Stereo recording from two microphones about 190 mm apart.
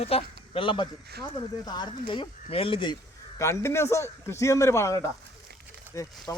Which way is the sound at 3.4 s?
15° left (ahead or behind).